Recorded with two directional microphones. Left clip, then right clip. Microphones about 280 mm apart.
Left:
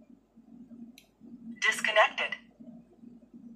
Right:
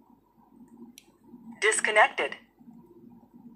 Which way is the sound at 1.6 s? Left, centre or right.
Centre.